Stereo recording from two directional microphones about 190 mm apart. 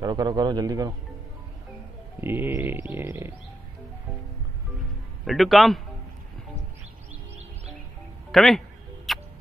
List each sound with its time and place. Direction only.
0.0 s a man's voice: 20° right (ahead or behind)
2.1 s music: 10° right (ahead or behind)
5.2 s a man's voice: centre (ahead or behind)
8.3 s music: centre (ahead or behind)